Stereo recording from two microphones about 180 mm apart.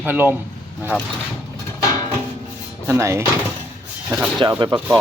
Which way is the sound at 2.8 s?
15° right (ahead or behind).